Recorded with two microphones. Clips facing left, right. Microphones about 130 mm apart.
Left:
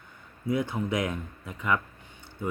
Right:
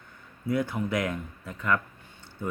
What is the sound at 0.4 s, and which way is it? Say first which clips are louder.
Speech: even; 20° left (ahead or behind).